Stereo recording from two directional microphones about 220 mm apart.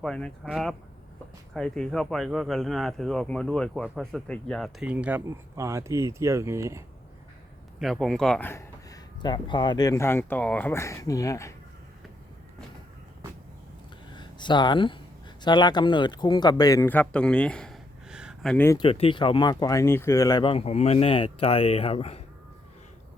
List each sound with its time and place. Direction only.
0.0 s speech: centre (ahead or behind); by 6.8 s 15° right (ahead or behind)
7.8 s speech: centre (ahead or behind)
14.2 s a sound: 20° left (ahead or behind)
15.4 s a man's voice: 20° left (ahead or behind); by 18.5 s 5° right (ahead or behind)
18.5 s speech: 10° left (ahead or behind)
18.8 s speech: 25° left (ahead or behind)